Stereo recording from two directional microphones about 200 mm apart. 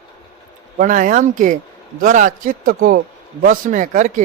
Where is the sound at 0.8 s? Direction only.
40° right (ahead or behind).